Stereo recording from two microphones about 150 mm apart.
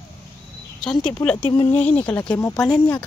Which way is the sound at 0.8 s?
5° left (ahead or behind).